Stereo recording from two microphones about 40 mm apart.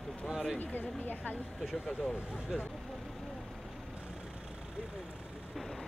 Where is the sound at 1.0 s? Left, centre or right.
Left.